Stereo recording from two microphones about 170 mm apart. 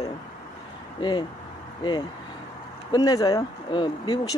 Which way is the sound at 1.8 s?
25° left (ahead or behind).